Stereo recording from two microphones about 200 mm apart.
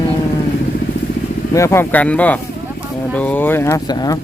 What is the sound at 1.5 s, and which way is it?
Speech, 15° left (ahead or behind).